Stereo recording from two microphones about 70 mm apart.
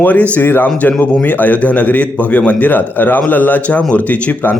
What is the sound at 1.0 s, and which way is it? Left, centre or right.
Speech, centre.